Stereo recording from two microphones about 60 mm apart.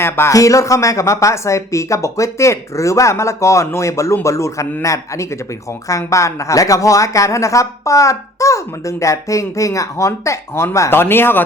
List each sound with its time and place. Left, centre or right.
0.3 s speech: left